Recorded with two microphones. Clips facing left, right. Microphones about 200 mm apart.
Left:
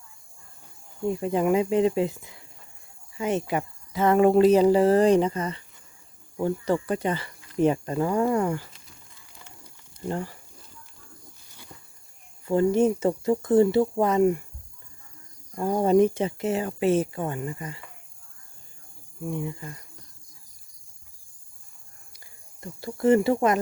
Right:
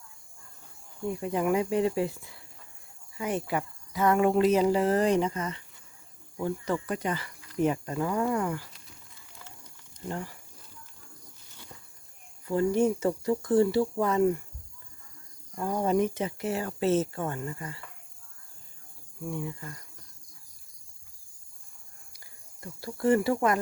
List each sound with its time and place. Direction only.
1.0 s speech: 25° left (ahead or behind)
10.1 s speech: 30° left (ahead or behind)
12.5 s speech: 25° left (ahead or behind)
15.5 s speech: 30° left (ahead or behind); by 17.8 s 15° left (ahead or behind)
19.2 s speech: 20° left (ahead or behind)
22.6 s speech: 25° left (ahead or behind)